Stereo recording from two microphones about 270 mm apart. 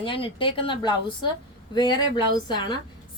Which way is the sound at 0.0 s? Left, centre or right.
Centre.